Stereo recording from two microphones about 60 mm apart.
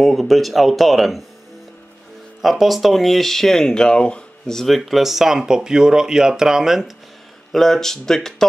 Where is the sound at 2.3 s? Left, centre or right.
Centre.